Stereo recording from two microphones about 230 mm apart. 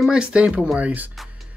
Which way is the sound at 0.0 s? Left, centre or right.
Centre.